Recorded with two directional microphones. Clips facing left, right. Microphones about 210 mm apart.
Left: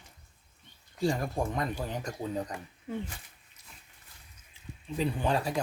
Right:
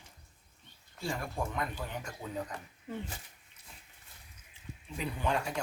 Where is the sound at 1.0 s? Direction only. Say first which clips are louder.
Left 7 dB; 40° left (ahead or behind).